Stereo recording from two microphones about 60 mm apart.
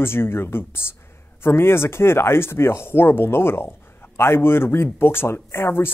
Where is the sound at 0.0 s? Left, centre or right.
Left.